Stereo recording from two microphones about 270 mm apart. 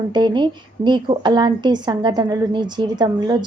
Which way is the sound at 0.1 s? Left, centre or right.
Centre.